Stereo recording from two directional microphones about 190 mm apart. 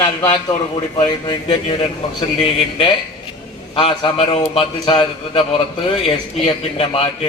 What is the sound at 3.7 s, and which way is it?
A man's voice, 30° left (ahead or behind).